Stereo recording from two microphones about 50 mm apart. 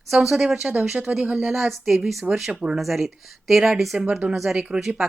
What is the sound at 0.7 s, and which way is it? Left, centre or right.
Speech, right.